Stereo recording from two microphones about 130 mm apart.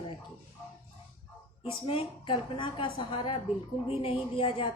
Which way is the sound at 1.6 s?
45° left (ahead or behind).